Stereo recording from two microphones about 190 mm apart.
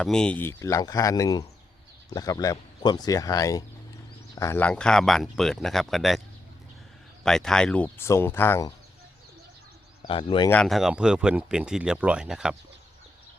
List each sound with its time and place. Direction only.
0.0 s speech: 5° left (ahead or behind)
7.3 s speech: 5° left (ahead or behind)
10.0 s speech: 25° left (ahead or behind)
10.5 s speech: centre (ahead or behind)